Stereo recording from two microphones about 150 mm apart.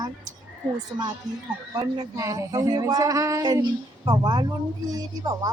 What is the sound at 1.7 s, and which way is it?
Speech, 25° right (ahead or behind).